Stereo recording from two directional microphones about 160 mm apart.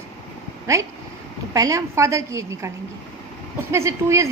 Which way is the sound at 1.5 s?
20° right (ahead or behind).